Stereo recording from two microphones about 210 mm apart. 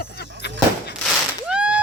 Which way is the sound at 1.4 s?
5° right (ahead or behind).